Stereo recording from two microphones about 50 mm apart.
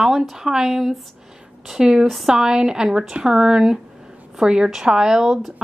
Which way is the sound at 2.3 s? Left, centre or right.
Centre.